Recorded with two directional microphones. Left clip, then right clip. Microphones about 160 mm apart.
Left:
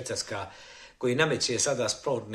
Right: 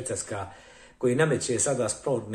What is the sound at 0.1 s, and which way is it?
Speech, 20° left (ahead or behind).